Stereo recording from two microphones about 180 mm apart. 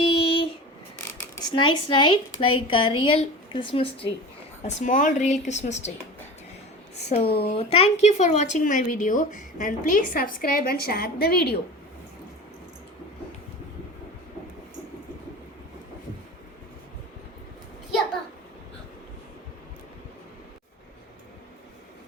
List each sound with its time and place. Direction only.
0.0 s a sound: 30° left (ahead or behind)
1.5 s a woman's voice: 25° left (ahead or behind)
4.6 s speech: 45° left (ahead or behind)
6.9 s a woman's voice: 35° left (ahead or behind); by 11.5 s 60° left (ahead or behind)